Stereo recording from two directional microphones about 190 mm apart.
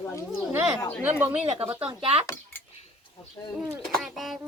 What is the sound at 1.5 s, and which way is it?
Speech, 30° right (ahead or behind).